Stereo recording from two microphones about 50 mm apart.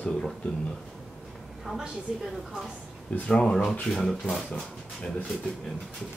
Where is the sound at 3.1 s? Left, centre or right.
Left.